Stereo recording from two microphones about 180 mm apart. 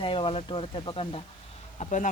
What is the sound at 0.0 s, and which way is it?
Speech, 30° left (ahead or behind).